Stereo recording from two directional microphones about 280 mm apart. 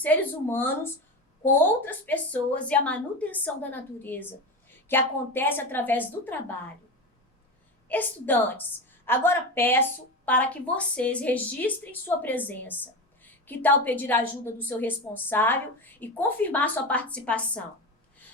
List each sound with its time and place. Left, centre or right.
0.0 s a woman's voice: centre
7.9 s a woman's voice: centre